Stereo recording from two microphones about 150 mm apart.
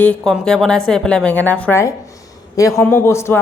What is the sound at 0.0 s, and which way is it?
A woman's voice, 5° left (ahead or behind).